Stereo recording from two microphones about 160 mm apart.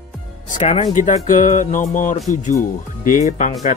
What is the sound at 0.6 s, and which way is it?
Speech, 40° left (ahead or behind).